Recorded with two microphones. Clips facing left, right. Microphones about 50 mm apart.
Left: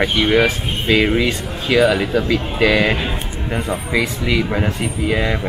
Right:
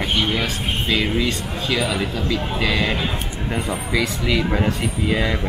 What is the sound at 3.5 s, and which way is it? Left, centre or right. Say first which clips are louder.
Speech: left 3 dB; centre.